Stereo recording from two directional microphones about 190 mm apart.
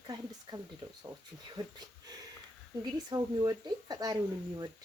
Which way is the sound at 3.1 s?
20° right (ahead or behind).